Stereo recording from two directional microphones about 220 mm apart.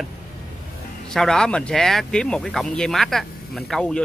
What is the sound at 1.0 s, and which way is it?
Speech, centre (ahead or behind).